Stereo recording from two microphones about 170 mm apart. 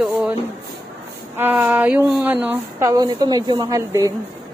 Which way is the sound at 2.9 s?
20° right (ahead or behind).